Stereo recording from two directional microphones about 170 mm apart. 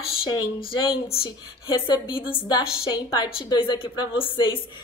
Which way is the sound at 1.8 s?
25° left (ahead or behind).